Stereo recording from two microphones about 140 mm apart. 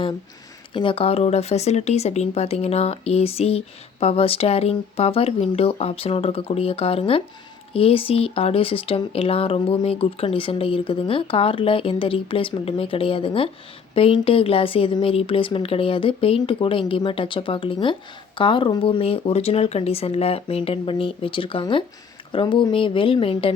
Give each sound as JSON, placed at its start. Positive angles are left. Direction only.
{"t": 0.7, "sound": "speech", "side_deg": 35}